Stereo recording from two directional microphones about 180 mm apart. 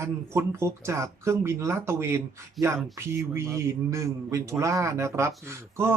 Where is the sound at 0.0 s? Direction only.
15° right (ahead or behind).